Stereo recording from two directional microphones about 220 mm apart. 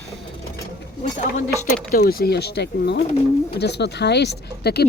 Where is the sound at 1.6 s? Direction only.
35° left (ahead or behind).